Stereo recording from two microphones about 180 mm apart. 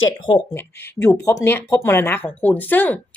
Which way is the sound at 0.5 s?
15° left (ahead or behind).